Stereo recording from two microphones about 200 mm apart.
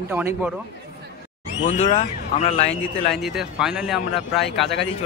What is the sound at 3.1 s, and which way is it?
Speech, centre (ahead or behind).